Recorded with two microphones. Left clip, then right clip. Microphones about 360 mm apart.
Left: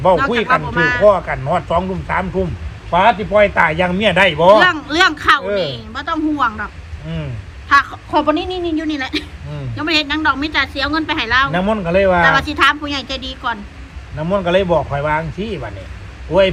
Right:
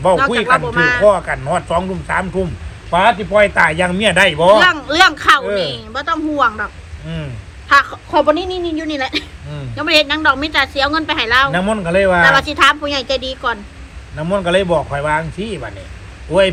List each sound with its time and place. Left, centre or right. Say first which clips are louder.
0.4 s a woman's voice: right 2 dB; centre
1.0 s a man's voice: even; right
4.6 s a woman's voice: right 2 dB; centre
7.7 s a woman's voice: right 1 dB; centre
11.5 s a man's voice: even; right
12.2 s a woman's voice: right 2 dB; centre
14.2 s a man's voice: even; right